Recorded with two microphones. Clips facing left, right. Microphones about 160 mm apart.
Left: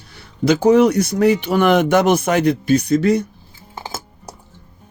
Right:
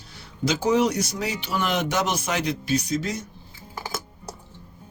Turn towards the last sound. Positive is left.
turn(degrees=25)  # may be behind; listen again after turning